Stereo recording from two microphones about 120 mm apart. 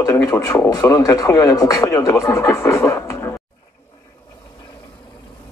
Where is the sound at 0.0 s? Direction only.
25° left (ahead or behind).